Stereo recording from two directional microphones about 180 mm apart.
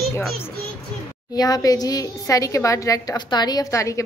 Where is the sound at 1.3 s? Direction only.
20° left (ahead or behind).